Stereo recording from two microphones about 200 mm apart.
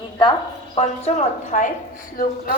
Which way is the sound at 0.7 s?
35° left (ahead or behind).